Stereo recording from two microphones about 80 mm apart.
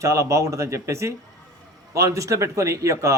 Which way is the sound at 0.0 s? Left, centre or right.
Right.